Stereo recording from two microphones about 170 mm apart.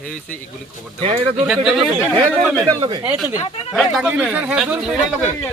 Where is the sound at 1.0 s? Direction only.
35° right (ahead or behind).